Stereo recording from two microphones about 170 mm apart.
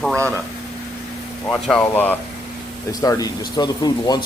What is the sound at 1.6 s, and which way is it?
Speech, 5° left (ahead or behind).